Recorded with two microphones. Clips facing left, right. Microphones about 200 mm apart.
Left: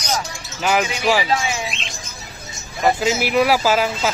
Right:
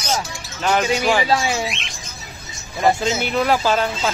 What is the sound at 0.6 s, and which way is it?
Speech, 5° left (ahead or behind).